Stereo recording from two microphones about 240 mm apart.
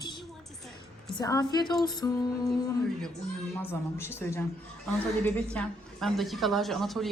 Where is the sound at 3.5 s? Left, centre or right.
Centre.